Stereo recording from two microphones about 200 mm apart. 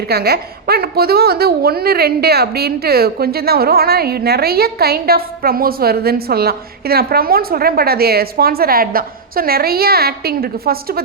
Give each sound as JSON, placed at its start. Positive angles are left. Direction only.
{"t": 0.1, "sound": "a woman's voice", "side_deg": -50}